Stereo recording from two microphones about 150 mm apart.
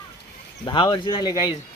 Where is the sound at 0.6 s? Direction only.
35° left (ahead or behind).